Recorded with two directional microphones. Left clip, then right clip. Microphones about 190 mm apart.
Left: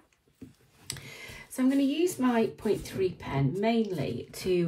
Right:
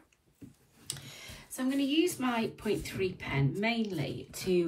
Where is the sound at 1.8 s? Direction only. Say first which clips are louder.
Left 2 dB; 20° left (ahead or behind).